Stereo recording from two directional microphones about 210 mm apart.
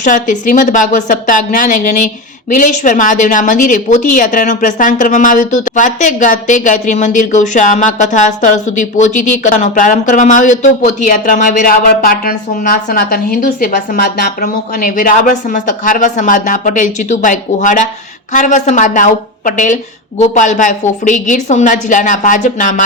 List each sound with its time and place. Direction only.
0.0 s a woman's voice: 40° left (ahead or behind)